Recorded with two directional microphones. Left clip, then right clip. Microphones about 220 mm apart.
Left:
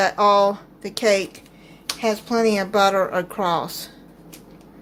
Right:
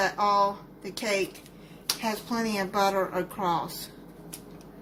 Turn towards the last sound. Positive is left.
turn(degrees=40)  # may be behind; listen again after turning